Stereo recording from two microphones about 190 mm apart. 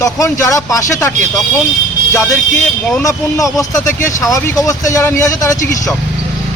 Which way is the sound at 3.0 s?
15° left (ahead or behind).